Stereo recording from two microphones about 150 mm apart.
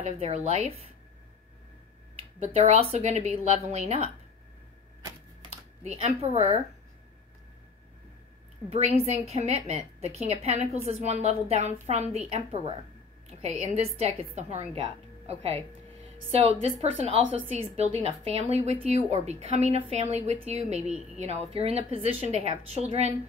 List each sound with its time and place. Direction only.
0.0 s a woman's voice: 45° right (ahead or behind)
2.4 s a woman's voice: 45° right (ahead or behind)
5.9 s a woman's voice: 45° right (ahead or behind)
8.6 s a woman's voice: 45° right (ahead or behind)
20.8 s a woman's voice: 5° right (ahead or behind)
21.5 s a woman's voice: 40° right (ahead or behind)